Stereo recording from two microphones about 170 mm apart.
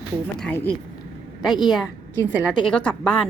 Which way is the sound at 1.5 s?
25° left (ahead or behind).